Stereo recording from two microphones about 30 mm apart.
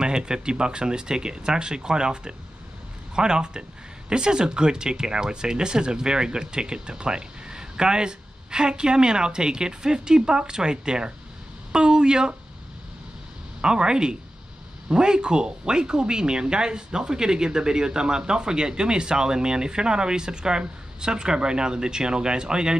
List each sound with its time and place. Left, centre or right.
0.0 s speech: right
13.6 s speech: right